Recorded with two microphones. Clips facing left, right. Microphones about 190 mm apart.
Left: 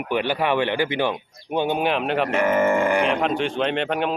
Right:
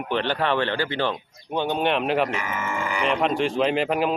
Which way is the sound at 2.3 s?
55° left (ahead or behind).